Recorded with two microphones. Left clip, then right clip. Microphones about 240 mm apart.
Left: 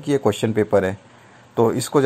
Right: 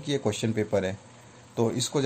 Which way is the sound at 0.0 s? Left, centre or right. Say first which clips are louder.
Left 9 dB; centre.